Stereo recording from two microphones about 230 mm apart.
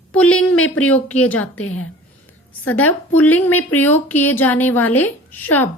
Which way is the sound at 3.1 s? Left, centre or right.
Centre.